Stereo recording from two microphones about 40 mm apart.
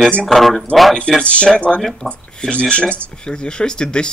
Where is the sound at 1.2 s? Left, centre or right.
Left.